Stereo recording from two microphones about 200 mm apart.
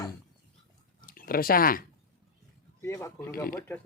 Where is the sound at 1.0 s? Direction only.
45° left (ahead or behind).